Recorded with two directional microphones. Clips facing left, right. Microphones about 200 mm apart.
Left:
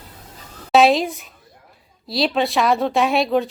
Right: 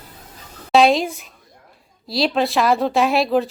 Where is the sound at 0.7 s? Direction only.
Centre (ahead or behind).